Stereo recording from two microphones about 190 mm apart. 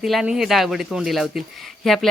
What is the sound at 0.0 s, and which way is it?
Speech, centre (ahead or behind).